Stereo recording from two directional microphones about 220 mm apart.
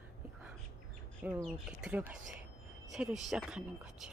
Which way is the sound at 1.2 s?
10° right (ahead or behind).